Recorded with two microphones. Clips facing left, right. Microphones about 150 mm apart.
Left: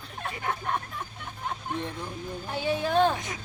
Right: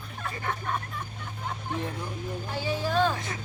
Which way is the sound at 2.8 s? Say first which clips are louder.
Left 2 dB; 20° left (ahead or behind).